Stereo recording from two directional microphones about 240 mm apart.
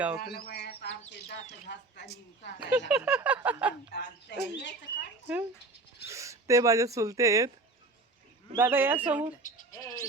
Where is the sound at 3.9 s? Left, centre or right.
Left.